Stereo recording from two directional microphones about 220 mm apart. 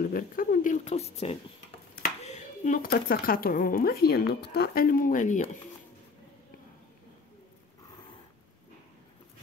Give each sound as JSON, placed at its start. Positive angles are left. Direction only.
{"t": 0.0, "sound": "speech", "side_deg": 40}